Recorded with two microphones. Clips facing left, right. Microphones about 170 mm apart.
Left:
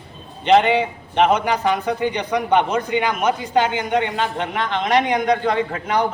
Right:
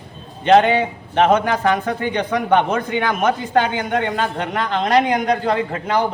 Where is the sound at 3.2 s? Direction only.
55° right (ahead or behind).